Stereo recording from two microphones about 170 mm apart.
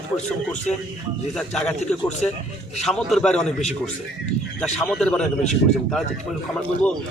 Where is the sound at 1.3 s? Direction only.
5° left (ahead or behind).